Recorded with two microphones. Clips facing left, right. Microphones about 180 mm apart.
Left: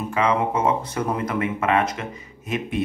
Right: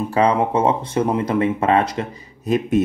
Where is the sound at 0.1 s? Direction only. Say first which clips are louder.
Right 4 dB; 35° right (ahead or behind).